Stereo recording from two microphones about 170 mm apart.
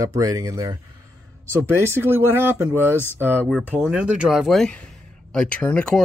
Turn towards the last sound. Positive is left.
turn(degrees=5)  # may be behind; listen again after turning